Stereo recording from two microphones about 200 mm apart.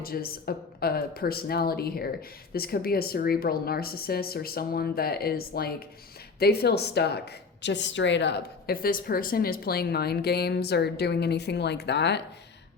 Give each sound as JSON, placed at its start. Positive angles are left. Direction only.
{"t": 0.0, "sound": "a woman's voice", "side_deg": 50}